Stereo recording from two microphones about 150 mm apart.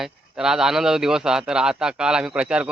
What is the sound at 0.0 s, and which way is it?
A man's voice, 5° right (ahead or behind).